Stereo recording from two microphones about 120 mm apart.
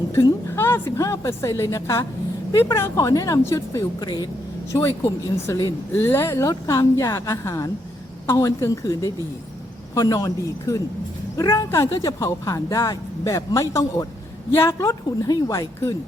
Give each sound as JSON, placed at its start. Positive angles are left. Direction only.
{"t": 0.1, "sound": "speech", "side_deg": 20}